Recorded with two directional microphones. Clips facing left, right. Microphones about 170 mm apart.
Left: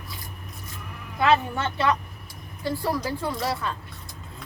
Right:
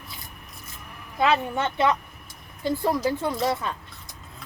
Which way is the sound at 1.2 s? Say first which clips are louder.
Left 1 dB; 20° right (ahead or behind).